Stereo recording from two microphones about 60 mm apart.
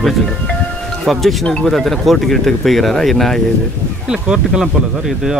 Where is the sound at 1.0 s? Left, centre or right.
Centre.